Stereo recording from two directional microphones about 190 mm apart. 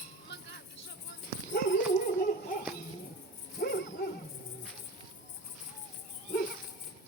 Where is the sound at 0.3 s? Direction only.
65° left (ahead or behind).